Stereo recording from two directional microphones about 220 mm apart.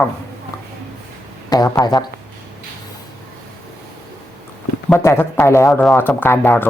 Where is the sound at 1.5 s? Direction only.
15° left (ahead or behind).